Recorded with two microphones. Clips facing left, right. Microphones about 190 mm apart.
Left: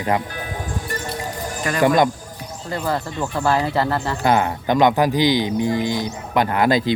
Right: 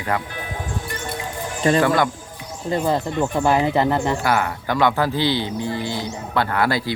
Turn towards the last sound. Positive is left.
turn(degrees=20)  # may be behind; listen again after turning